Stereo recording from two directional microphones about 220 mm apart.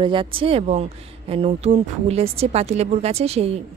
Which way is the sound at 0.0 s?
20° right (ahead or behind).